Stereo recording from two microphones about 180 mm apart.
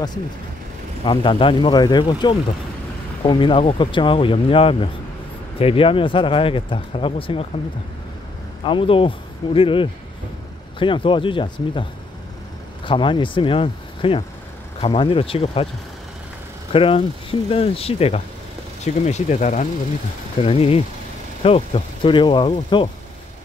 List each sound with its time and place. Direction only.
1.0 s speech: 30° left (ahead or behind)
8.6 s speech: 30° left (ahead or behind)
12.8 s speech: 30° left (ahead or behind)
16.7 s speech: 30° left (ahead or behind)
20.4 s speech: 35° left (ahead or behind)